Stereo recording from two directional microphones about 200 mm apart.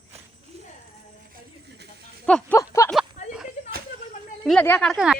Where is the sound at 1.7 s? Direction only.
55° right (ahead or behind).